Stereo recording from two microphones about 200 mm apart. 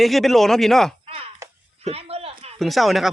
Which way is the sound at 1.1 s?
30° right (ahead or behind).